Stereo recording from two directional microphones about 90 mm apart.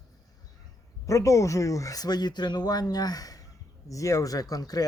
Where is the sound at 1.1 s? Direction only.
35° left (ahead or behind).